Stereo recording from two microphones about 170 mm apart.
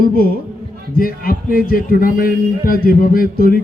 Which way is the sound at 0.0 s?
60° left (ahead or behind).